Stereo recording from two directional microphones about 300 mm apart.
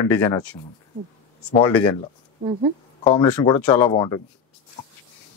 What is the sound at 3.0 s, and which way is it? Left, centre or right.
Speech, centre.